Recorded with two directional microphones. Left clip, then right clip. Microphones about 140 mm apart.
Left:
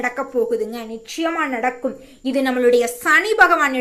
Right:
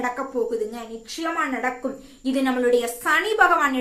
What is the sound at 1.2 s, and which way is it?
A woman's voice, 35° left (ahead or behind).